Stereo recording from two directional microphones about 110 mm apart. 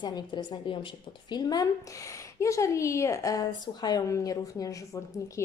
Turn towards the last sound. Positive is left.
turn(degrees=30)  # may be behind; listen again after turning